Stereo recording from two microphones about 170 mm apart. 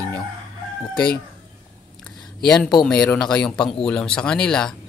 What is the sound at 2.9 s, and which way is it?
Speech, 5° left (ahead or behind).